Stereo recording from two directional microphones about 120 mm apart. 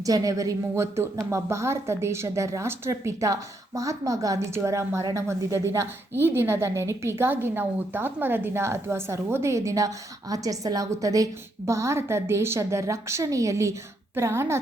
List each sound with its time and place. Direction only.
0.0 s a woman's voice: 30° right (ahead or behind)